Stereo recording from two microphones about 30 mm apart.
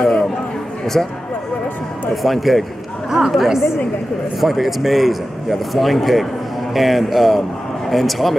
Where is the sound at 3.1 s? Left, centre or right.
Centre.